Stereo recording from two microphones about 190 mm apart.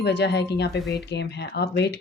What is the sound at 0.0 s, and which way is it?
Speech, 60° left (ahead or behind).